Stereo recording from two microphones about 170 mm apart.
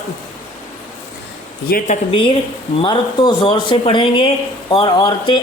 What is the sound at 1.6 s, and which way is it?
Speech, 60° left (ahead or behind).